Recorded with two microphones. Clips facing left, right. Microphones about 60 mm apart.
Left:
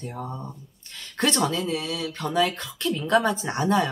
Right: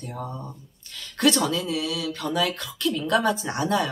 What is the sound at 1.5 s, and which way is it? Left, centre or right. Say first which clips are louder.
Speech: right 1 dB; left.